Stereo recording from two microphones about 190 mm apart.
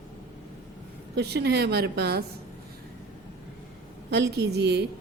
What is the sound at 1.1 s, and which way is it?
A woman's voice, 60° right (ahead or behind).